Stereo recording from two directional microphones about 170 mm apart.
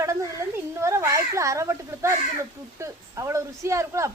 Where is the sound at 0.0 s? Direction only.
20° right (ahead or behind).